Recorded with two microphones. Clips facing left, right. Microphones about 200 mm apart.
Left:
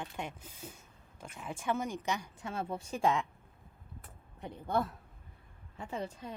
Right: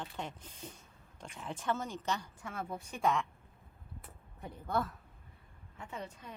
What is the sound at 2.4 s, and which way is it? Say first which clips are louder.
Speech: left 3 dB; 30° left (ahead or behind).